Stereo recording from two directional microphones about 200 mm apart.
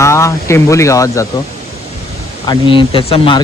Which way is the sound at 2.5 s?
25° left (ahead or behind).